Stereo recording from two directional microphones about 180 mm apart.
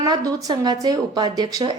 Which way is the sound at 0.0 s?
20° right (ahead or behind).